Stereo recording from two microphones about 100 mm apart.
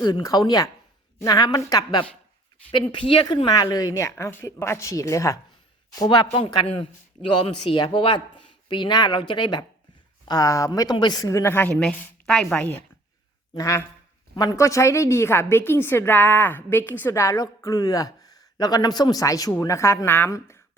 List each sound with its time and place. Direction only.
0.0 s a woman's voice: 40° left (ahead or behind)
2.7 s speech: 60° left (ahead or behind)
3.2 s a woman's voice: 40° left (ahead or behind)
6.0 s a man's voice: 45° left (ahead or behind)
11.4 s a woman's voice: 20° left (ahead or behind)
13.6 s a woman's voice: 30° left (ahead or behind)